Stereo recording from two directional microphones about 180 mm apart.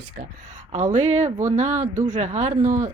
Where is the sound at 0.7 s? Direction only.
40° right (ahead or behind).